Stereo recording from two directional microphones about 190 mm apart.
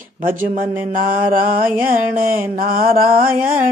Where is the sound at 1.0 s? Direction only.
45° right (ahead or behind).